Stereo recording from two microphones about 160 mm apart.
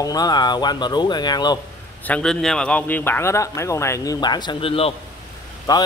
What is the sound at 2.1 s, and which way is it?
Speech, 5° left (ahead or behind).